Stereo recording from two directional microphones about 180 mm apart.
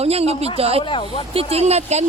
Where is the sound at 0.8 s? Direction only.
25° left (ahead or behind).